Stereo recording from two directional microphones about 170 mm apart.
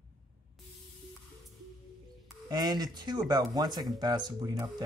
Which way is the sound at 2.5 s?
25° right (ahead or behind).